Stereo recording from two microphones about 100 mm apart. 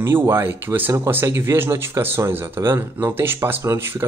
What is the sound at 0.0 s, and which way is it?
Speech, 25° right (ahead or behind).